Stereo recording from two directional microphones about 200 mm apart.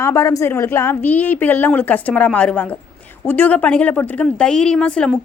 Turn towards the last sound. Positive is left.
turn(degrees=5)  # may be behind; listen again after turning